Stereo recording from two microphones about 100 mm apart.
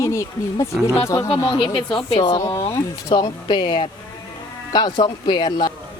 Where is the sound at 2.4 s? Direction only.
30° left (ahead or behind).